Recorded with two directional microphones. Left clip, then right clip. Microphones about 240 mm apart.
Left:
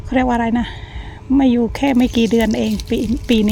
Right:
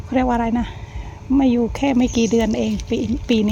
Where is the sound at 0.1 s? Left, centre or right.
Centre.